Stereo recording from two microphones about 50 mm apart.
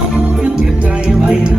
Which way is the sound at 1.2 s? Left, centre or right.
Right.